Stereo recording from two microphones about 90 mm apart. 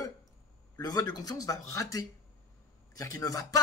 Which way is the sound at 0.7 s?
45° left (ahead or behind).